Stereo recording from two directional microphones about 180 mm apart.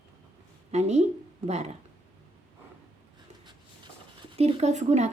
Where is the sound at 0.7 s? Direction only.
40° right (ahead or behind).